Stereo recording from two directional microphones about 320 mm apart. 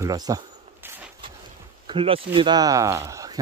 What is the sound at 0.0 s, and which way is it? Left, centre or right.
Speech, centre.